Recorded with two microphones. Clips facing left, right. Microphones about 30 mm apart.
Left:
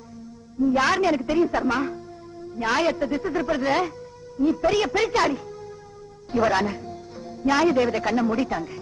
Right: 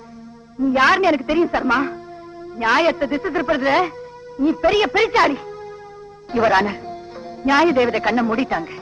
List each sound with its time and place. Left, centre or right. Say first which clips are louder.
0.6 s a woman's voice: right 5 dB; right